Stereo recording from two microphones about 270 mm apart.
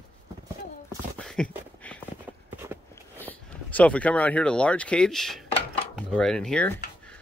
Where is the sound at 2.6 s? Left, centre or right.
Centre.